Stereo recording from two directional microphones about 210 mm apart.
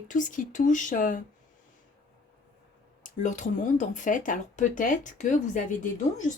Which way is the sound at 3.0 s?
35° left (ahead or behind).